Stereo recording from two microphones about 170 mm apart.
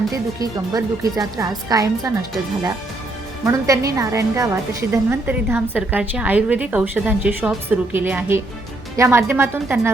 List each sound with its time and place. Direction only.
0.3 s a woman's voice: 20° right (ahead or behind)
3.4 s a woman's voice: 20° right (ahead or behind)